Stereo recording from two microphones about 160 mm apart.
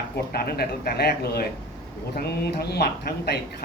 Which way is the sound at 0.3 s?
75° left (ahead or behind).